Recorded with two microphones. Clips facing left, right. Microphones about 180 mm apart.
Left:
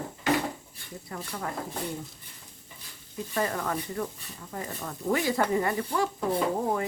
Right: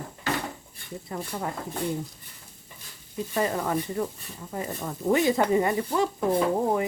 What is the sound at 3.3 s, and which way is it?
Speech, 20° right (ahead or behind).